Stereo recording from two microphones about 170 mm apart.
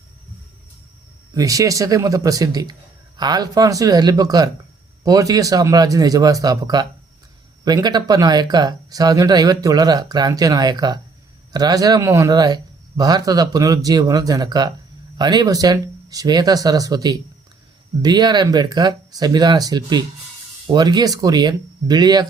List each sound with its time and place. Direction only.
1.3 s speech: 20° right (ahead or behind)